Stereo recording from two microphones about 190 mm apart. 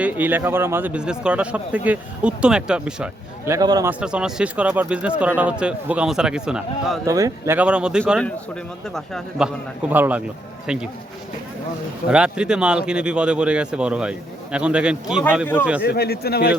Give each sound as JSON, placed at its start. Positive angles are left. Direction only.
{"t": 0.0, "sound": "a man's voice", "side_deg": -10}
{"t": 4.0, "sound": "speech", "side_deg": -5}
{"t": 7.0, "sound": "a man's voice", "side_deg": -15}
{"t": 9.9, "sound": "a man's voice", "side_deg": -10}
{"t": 12.0, "sound": "speech", "side_deg": -5}
{"t": 15.8, "sound": "speech", "side_deg": 55}